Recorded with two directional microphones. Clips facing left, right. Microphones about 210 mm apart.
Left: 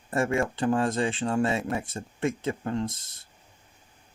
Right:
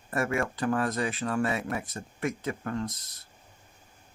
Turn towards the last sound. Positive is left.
turn(degrees=25)  # may be behind; listen again after turning